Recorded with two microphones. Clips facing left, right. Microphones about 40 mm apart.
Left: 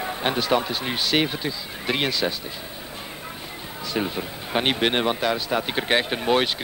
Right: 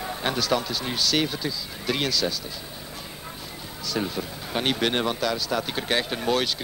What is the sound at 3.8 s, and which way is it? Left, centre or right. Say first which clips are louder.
Speech: left 2 dB; left.